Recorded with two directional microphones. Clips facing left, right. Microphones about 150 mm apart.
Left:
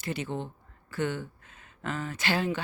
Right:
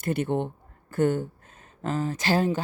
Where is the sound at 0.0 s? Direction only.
55° right (ahead or behind).